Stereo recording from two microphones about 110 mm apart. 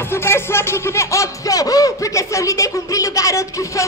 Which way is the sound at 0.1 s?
20° left (ahead or behind).